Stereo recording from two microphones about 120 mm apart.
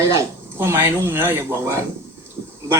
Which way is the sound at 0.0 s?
25° right (ahead or behind).